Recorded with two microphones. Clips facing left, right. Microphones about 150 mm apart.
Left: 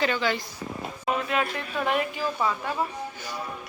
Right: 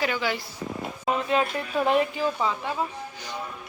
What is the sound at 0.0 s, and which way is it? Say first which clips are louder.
Speech: left 1 dB; 10° right (ahead or behind).